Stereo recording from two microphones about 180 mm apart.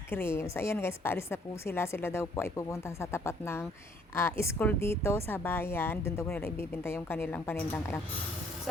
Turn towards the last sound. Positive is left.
turn(degrees=15)  # may be behind; listen again after turning